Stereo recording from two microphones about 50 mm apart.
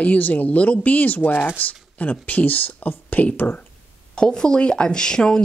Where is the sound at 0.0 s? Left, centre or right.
Left.